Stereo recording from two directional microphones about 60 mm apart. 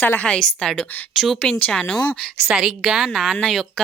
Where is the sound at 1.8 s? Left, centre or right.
Centre.